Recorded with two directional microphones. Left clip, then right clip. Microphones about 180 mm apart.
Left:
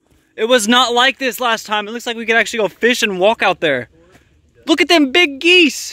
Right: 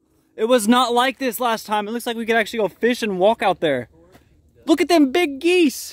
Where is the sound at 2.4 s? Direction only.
5° right (ahead or behind).